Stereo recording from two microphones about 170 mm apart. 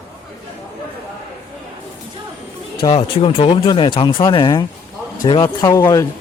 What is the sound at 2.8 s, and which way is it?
Speech, 35° left (ahead or behind).